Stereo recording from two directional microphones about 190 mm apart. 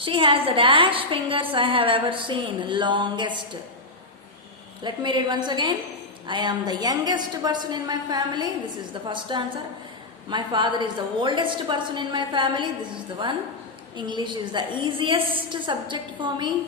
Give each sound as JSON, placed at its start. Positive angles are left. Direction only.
{"t": 0.0, "sound": "a woman's voice", "side_deg": -25}
{"t": 4.8, "sound": "a woman's voice", "side_deg": -25}
{"t": 13.9, "sound": "a woman's voice", "side_deg": -25}